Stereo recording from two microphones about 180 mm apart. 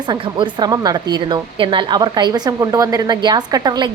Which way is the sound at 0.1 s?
25° right (ahead or behind).